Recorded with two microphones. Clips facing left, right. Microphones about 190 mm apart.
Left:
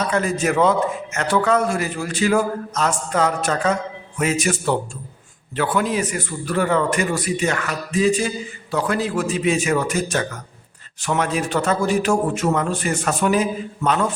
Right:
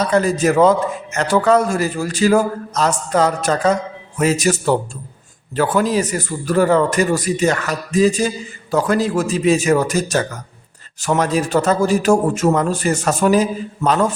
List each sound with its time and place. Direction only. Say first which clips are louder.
0.0 s a man's voice: right 5 dB; 35° right (ahead or behind)